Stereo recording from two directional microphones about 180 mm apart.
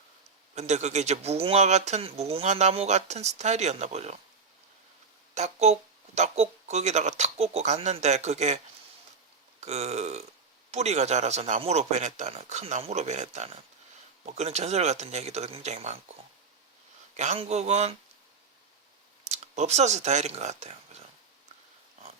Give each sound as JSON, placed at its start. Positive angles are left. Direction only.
{"t": 0.5, "sound": "speech", "side_deg": -40}
{"t": 5.3, "sound": "speech", "side_deg": -40}
{"t": 17.2, "sound": "speech", "side_deg": -35}
{"t": 19.2, "sound": "speech", "side_deg": -40}